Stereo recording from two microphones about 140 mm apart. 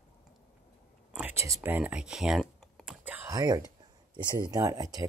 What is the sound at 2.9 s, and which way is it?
Computer keyboard, 10° right (ahead or behind).